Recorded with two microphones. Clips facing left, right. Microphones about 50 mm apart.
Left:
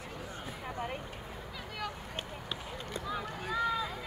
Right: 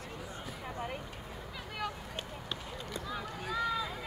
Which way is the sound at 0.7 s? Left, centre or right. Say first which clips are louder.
Left 2 dB; left.